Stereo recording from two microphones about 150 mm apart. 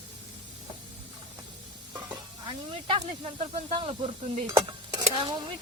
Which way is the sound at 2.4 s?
30° right (ahead or behind).